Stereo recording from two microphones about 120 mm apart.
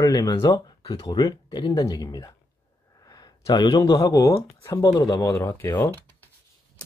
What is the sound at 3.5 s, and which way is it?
Speech, 35° left (ahead or behind).